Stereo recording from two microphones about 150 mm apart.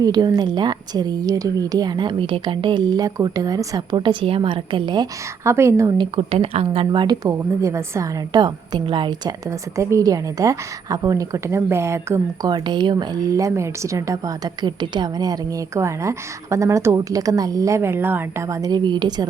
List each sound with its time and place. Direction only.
0.0 s speech: 25° right (ahead or behind)
5.4 s speech: 15° right (ahead or behind)
6.0 s speech: 40° right (ahead or behind)